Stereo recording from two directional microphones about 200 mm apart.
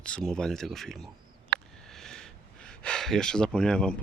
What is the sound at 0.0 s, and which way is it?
Speech, 5° left (ahead or behind).